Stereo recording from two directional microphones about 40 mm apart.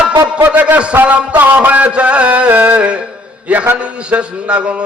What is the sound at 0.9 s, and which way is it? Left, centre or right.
Speech, right.